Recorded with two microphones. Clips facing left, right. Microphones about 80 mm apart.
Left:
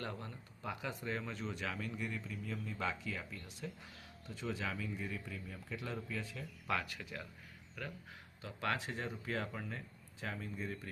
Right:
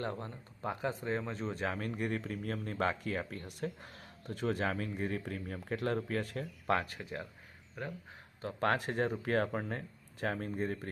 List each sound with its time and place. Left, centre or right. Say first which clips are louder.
0.0 s speech: right 6 dB; right
6.7 s speech: right 6 dB; right